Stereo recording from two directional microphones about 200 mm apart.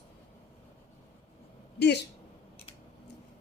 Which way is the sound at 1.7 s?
60° left (ahead or behind).